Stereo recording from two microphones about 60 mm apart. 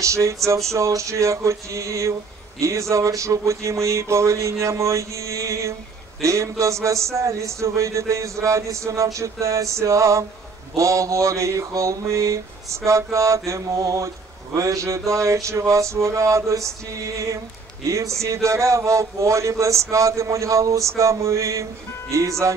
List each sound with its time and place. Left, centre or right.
0.0 s mantra: right
17.8 s mantra: right